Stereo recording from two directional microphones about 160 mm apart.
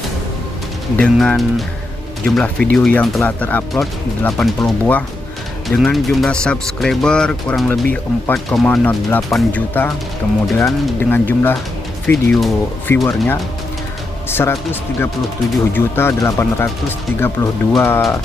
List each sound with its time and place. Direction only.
0.9 s speech: 5° left (ahead or behind)